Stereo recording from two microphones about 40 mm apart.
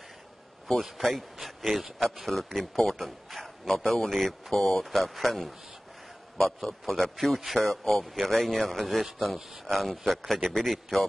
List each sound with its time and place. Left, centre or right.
0.8 s a man's voice: centre